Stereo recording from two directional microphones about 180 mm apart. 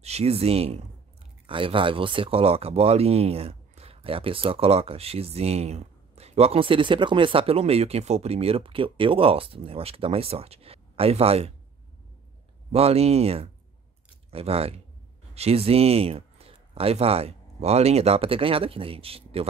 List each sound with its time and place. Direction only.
0.0 s speech: 35° right (ahead or behind)
12.7 s speech: 35° right (ahead or behind)